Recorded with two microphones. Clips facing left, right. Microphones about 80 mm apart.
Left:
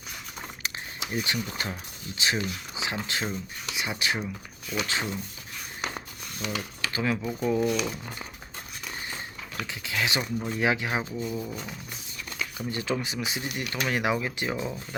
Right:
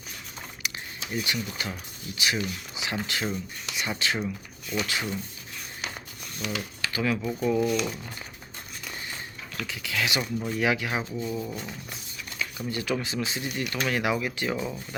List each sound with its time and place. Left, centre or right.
1.1 s speech: left
6.4 s speech: left
7.2 s speech: centre
9.6 s speech: left
11.1 s speech: centre
12.4 s speech: left
14.5 s speech: centre